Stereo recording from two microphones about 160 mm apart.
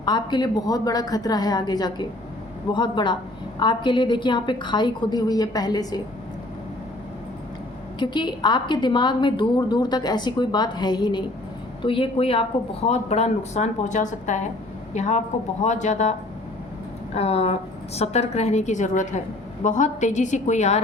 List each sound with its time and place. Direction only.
0.0 s a woman's voice: 25° left (ahead or behind)
7.9 s a woman's voice: 30° left (ahead or behind); by 16.1 s 45° left (ahead or behind)
17.2 s a woman's voice: 40° left (ahead or behind)